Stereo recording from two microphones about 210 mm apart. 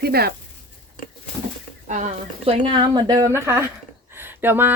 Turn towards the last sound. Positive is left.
turn(degrees=-10)  # may be behind; listen again after turning